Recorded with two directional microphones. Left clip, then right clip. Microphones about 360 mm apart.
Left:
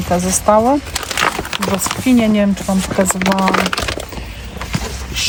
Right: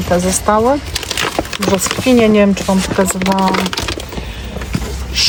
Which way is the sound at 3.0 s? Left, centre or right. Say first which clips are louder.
Left 1 dB; centre.